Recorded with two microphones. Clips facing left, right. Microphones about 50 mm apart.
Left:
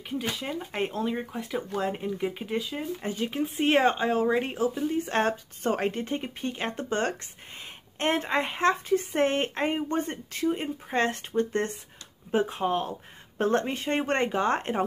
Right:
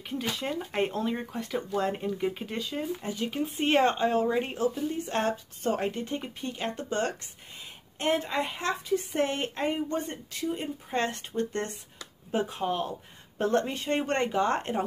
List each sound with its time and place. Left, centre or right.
0.1 s speech: centre
3.0 s speech: left
3.6 s speech: centre
5.0 s speech: left